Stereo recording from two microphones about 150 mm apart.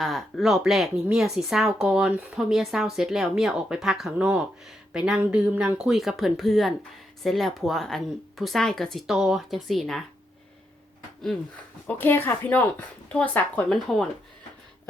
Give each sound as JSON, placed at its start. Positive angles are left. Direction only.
{"t": 0.0, "sound": "speech", "side_deg": 0}
{"t": 11.9, "sound": "speech", "side_deg": 10}